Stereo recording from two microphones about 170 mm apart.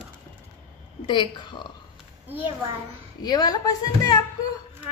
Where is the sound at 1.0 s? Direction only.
30° left (ahead or behind).